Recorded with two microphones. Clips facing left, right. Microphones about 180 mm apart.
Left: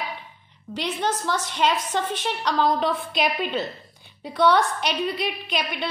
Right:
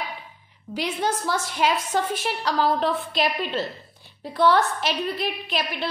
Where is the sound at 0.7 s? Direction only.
10° right (ahead or behind).